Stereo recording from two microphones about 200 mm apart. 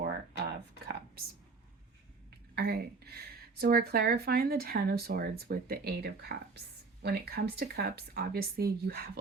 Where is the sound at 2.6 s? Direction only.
50° right (ahead or behind).